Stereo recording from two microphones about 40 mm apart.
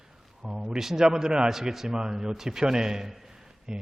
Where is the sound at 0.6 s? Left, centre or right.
Centre.